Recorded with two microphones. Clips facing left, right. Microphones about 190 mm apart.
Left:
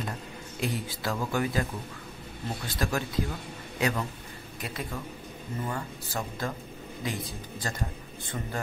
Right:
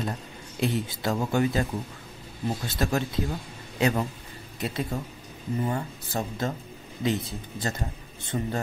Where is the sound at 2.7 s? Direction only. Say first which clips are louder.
Right 1 dB; 25° right (ahead or behind).